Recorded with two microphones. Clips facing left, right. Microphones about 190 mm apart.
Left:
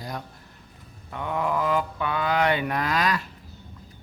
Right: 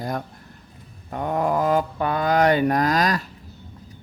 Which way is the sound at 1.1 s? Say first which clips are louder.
Right 4 dB; 40° right (ahead or behind).